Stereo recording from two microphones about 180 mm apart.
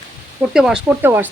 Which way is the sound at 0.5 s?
5° right (ahead or behind).